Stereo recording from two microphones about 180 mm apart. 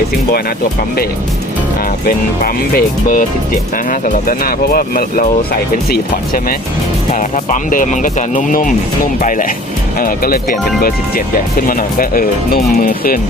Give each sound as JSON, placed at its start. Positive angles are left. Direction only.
{"t": 2.0, "sound": "speech", "side_deg": 55}
{"t": 7.1, "sound": "speech", "side_deg": 40}